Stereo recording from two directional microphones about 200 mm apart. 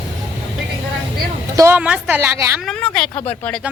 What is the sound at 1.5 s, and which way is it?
Speech, 10° right (ahead or behind).